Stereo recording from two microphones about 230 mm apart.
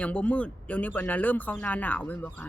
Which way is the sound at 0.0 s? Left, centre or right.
Centre.